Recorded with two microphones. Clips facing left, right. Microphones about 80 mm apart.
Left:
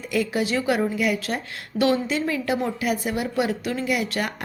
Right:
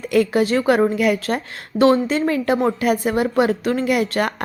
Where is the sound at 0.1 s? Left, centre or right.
Right.